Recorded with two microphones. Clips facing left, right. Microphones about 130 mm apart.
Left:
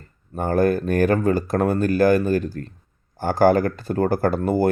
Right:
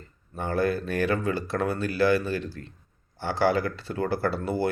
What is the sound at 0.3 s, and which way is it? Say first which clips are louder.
Speech: left 7 dB; 45° left (ahead or behind).